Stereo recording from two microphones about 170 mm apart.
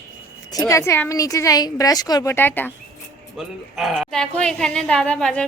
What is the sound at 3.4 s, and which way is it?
A woman's voice, centre (ahead or behind).